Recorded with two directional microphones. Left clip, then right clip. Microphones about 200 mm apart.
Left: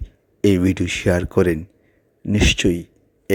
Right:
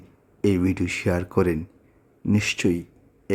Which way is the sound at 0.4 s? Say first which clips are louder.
Left 5 dB; 20° left (ahead or behind).